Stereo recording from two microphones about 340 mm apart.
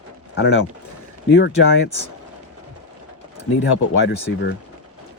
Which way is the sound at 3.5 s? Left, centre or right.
Left.